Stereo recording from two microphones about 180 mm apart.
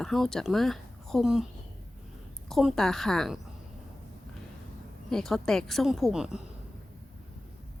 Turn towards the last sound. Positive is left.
turn(degrees=-5)  # may be behind; listen again after turning